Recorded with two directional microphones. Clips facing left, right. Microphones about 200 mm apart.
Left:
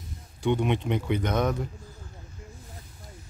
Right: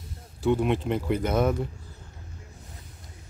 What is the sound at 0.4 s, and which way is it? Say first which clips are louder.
Speech: right 2 dB; 5° right (ahead or behind).